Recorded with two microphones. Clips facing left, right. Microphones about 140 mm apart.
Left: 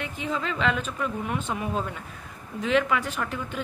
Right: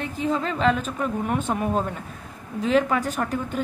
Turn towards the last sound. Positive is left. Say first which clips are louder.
# right 5 dB
turn(degrees=-40)  # may be behind; listen again after turning